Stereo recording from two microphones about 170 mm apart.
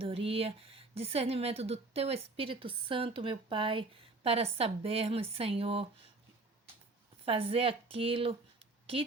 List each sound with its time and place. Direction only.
0.0 s speech: 35° right (ahead or behind)
7.3 s speech: 35° right (ahead or behind)